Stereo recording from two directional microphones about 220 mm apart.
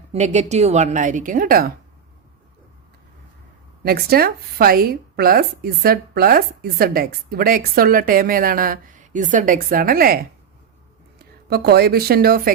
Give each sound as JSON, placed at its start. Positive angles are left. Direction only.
{"t": 0.1, "sound": "a woman's voice", "side_deg": -30}
{"t": 3.8, "sound": "a woman's voice", "side_deg": -45}
{"t": 11.4, "sound": "speech", "side_deg": -45}